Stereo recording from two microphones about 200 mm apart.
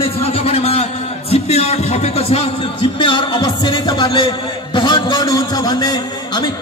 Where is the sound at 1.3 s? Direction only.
30° left (ahead or behind).